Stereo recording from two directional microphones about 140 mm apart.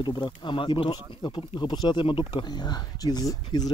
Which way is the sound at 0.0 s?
30° left (ahead or behind).